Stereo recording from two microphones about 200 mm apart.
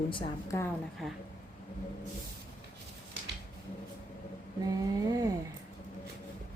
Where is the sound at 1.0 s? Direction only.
Centre (ahead or behind).